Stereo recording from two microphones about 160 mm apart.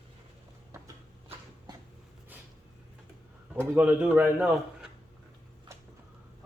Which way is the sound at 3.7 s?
10° right (ahead or behind).